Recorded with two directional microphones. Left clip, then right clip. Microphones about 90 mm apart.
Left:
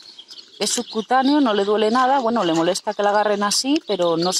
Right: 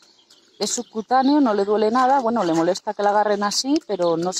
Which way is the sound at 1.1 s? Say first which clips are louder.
Even; centre (ahead or behind).